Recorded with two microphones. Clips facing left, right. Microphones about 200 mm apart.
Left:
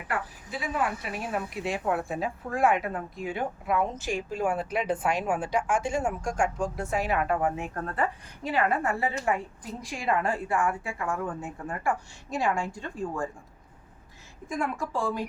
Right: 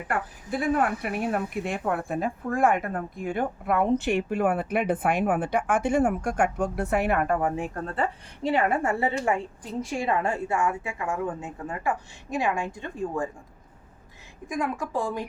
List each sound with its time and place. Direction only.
0.1 s speech: 55° right (ahead or behind)
7.4 s a woman's voice: 30° right (ahead or behind)
14.4 s speech: 15° right (ahead or behind)